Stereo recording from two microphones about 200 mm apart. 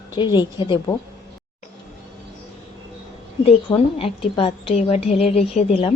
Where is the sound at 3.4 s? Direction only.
30° left (ahead or behind).